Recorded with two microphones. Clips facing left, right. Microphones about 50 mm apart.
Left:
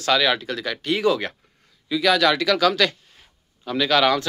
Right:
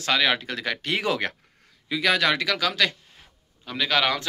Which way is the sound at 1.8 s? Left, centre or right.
Right.